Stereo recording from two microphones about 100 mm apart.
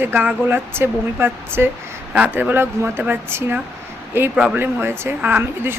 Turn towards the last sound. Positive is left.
turn(degrees=-20)  # may be behind; listen again after turning